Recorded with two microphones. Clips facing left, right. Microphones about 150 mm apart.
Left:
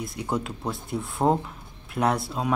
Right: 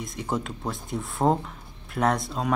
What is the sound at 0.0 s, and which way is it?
Speech, centre (ahead or behind).